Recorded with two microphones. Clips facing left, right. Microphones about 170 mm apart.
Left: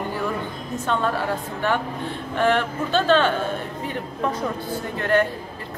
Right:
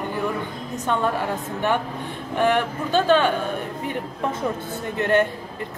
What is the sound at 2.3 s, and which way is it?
A man's voice, 15° right (ahead or behind).